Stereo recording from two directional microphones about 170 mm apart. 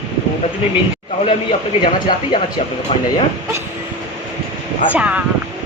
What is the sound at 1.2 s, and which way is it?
A man's voice, 30° left (ahead or behind).